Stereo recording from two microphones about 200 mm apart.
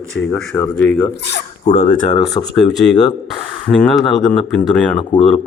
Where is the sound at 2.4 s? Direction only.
20° left (ahead or behind).